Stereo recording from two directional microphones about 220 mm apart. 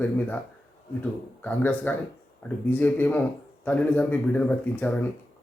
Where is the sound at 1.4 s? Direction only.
10° left (ahead or behind).